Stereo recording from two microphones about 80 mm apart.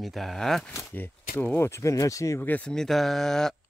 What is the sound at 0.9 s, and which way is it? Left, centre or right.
Speech, left.